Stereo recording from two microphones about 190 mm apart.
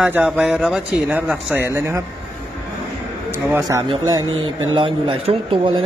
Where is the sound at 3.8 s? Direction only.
25° right (ahead or behind).